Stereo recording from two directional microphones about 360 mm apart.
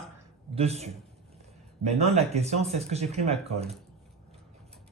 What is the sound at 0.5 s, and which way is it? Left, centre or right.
Speech, centre.